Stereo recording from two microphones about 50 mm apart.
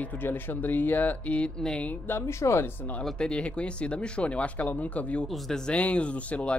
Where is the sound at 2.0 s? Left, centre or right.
Left.